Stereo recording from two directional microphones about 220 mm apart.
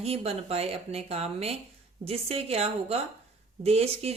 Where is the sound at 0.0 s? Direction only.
25° right (ahead or behind).